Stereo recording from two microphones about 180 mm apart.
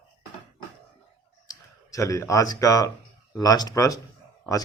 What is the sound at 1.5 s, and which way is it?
Speech, 20° left (ahead or behind).